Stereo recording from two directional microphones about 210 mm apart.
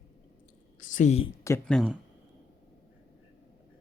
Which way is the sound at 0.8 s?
40° left (ahead or behind).